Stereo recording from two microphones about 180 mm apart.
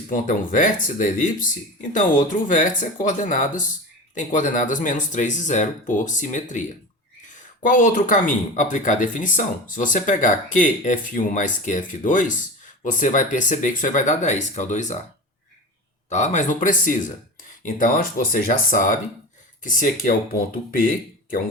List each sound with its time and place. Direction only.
0.1 s speech: 45° left (ahead or behind)
16.0 s speech: 40° left (ahead or behind)